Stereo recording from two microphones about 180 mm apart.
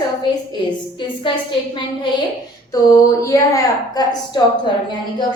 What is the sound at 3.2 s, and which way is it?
A woman's voice, 15° left (ahead or behind).